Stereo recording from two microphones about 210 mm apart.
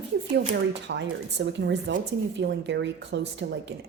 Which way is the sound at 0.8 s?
55° right (ahead or behind).